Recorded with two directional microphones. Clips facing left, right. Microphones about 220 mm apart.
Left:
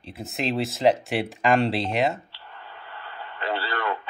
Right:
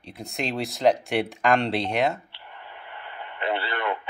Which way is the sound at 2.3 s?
20° right (ahead or behind).